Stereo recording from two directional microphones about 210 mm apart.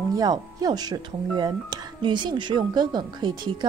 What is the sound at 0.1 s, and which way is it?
Speech, 20° right (ahead or behind).